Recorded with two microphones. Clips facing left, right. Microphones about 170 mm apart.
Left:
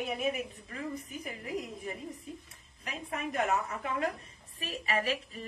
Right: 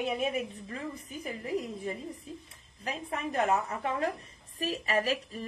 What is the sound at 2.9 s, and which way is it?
A woman's voice, 30° right (ahead or behind).